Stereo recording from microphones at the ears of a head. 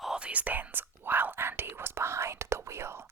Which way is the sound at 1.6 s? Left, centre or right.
Right.